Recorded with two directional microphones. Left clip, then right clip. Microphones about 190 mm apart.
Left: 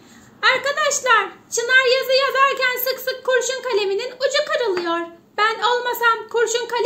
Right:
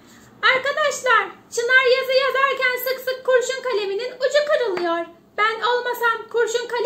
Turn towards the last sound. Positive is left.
turn(degrees=50)  # may be behind; listen again after turning